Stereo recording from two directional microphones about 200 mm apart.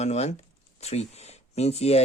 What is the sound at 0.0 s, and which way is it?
Speech, 35° left (ahead or behind).